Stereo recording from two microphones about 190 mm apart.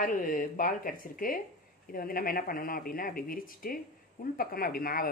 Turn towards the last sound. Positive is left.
turn(degrees=50)  # may be behind; listen again after turning